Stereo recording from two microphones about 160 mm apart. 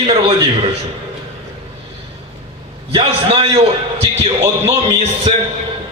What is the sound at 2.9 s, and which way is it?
A man's voice, 35° right (ahead or behind).